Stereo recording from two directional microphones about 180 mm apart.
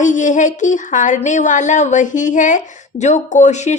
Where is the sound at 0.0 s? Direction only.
45° left (ahead or behind).